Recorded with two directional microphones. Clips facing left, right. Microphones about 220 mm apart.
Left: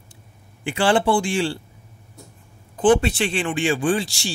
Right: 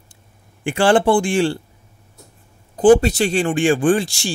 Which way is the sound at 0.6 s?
50° right (ahead or behind).